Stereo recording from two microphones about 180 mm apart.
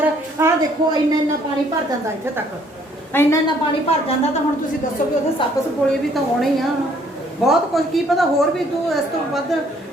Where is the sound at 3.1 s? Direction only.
10° left (ahead or behind).